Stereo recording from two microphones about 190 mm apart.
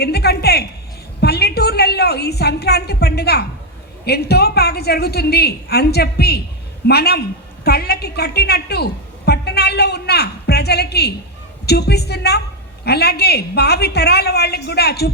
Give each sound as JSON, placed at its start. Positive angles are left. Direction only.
{"t": 0.0, "sound": "a woman's voice", "side_deg": 55}